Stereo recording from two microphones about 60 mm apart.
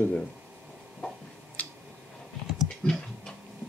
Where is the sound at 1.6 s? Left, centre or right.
Left.